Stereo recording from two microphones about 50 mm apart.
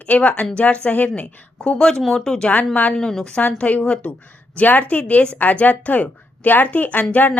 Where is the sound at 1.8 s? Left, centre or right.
Centre.